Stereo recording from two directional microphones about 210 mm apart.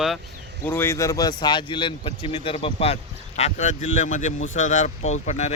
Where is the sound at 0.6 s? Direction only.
10° left (ahead or behind).